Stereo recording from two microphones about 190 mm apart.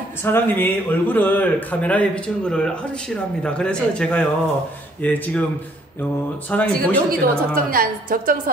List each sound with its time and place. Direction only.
0.2 s a man's voice: 10° left (ahead or behind)
6.5 s a man's voice: 10° left (ahead or behind)
7.1 s a woman's voice: 50° right (ahead or behind)